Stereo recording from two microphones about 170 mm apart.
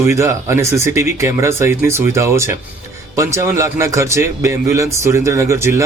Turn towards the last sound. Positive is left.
turn(degrees=-15)  # may be behind; listen again after turning